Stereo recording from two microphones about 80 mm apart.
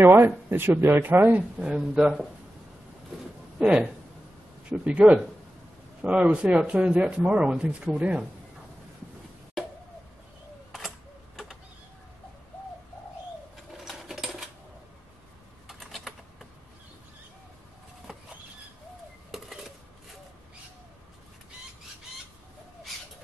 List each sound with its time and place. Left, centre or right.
0.0 s speech: right
1.6 s speech: centre
3.5 s speech: centre
13.8 s sewing machine: centre
15.8 s typing: centre
18.1 s a sound: centre